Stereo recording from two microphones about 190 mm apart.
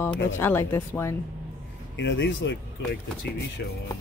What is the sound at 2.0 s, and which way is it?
Speech, 75° left (ahead or behind).